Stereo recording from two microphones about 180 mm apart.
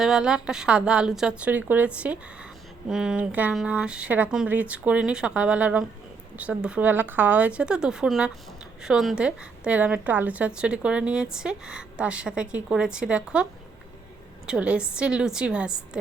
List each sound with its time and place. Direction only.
0.0 s a woman's voice: 5° right (ahead or behind)